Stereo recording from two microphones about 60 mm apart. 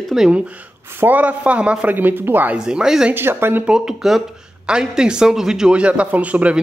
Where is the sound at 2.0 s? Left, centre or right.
Right.